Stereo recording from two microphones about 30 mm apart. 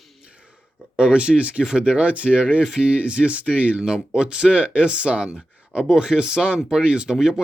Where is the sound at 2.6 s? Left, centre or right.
Right.